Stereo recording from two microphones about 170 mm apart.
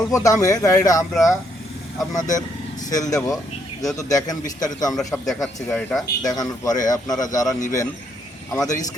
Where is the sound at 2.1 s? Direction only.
20° left (ahead or behind).